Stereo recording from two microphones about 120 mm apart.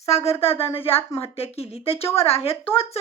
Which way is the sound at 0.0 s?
60° left (ahead or behind).